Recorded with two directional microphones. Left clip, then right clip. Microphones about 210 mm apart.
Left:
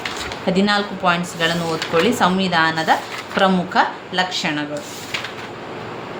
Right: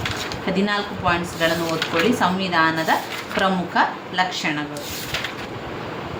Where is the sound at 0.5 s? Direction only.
55° left (ahead or behind).